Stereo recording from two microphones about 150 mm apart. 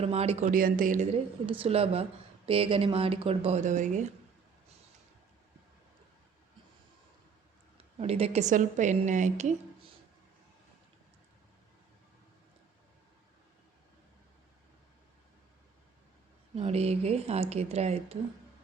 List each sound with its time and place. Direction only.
0.0 s speech: 45° right (ahead or behind)
0.5 s a woman's voice: 65° right (ahead or behind)
1.5 s speech: 40° right (ahead or behind); by 4.0 s 55° right (ahead or behind)
7.9 s speech: 45° right (ahead or behind)
16.6 s speech: 45° right (ahead or behind)